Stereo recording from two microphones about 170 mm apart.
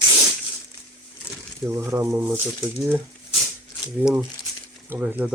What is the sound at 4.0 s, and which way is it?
Speech, 10° right (ahead or behind).